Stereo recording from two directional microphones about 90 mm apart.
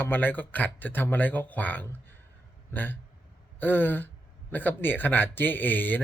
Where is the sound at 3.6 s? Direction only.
20° left (ahead or behind).